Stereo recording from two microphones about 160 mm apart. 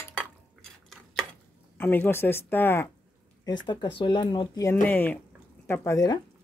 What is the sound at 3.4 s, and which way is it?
Speech, 25° left (ahead or behind).